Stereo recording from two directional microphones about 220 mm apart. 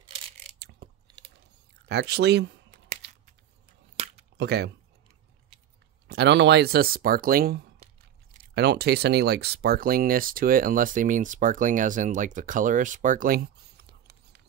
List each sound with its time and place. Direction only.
1.9 s speech: 50° right (ahead or behind)
3.0 s a sound: 50° right (ahead or behind)
4.4 s speech: 50° right (ahead or behind)
6.0 s speech: 50° right (ahead or behind)